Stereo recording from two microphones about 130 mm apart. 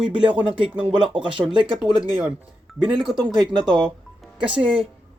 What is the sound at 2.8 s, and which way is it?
Speech, 5° right (ahead or behind).